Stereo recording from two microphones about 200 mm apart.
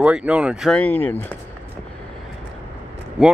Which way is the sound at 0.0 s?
5° right (ahead or behind).